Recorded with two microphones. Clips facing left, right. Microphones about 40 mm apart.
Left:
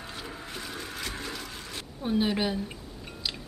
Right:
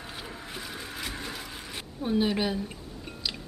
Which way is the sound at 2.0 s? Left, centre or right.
Centre.